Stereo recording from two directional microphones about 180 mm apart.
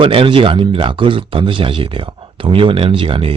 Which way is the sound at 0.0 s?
30° right (ahead or behind).